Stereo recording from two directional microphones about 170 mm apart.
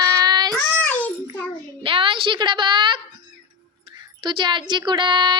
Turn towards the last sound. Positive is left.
turn(degrees=-25)  # may be behind; listen again after turning